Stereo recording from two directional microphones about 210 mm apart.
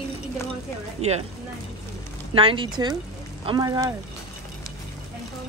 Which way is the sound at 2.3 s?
25° right (ahead or behind).